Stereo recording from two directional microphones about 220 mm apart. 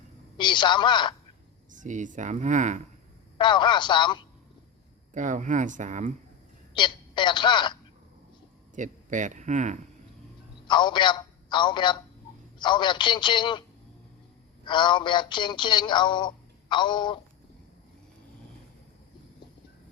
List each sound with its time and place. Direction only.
0.3 s speech: 20° left (ahead or behind)
1.8 s speech: 35° right (ahead or behind)
3.3 s speech: 20° left (ahead or behind)
5.1 s speech: 35° right (ahead or behind)
6.7 s a woman's voice: 20° left (ahead or behind)
8.7 s speech: 35° right (ahead or behind)
10.7 s speech: 20° left (ahead or behind)